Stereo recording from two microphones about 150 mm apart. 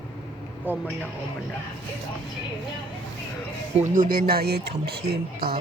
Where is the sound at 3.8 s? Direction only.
65° right (ahead or behind); by 5.5 s 90° right.